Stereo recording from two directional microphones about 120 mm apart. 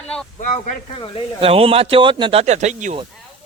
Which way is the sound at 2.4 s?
75° right (ahead or behind).